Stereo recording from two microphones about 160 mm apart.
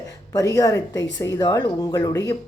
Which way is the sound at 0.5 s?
20° left (ahead or behind).